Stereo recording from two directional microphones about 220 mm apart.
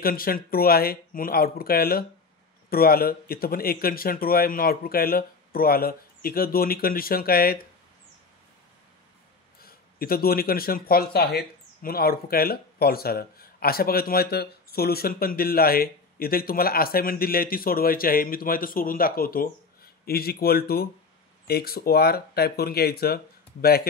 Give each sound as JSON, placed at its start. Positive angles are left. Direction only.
{"t": 0.0, "sound": "a man's voice", "side_deg": 40}
{"t": 9.6, "sound": "a man's voice", "side_deg": 45}